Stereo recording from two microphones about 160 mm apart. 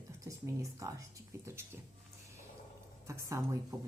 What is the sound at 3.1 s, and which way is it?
Speech, 20° right (ahead or behind).